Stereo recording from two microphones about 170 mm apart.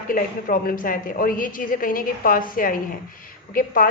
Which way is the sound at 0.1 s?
55° left (ahead or behind).